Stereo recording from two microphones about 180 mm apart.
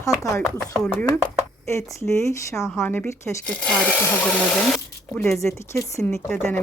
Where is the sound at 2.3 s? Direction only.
15° left (ahead or behind).